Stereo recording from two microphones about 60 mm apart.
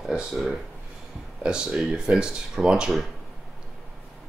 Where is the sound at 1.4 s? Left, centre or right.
Centre.